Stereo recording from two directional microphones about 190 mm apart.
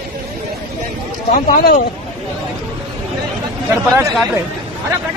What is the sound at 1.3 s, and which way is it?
Speech, 50° left (ahead or behind).